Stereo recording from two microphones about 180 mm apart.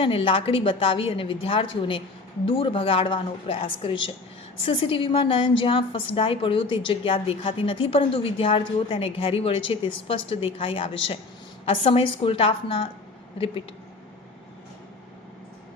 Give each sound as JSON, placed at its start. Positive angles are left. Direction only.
{"t": 0.0, "sound": "a woman's voice", "side_deg": 30}